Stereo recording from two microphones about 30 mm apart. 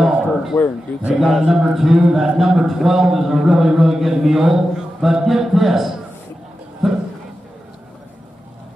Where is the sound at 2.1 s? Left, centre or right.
Centre.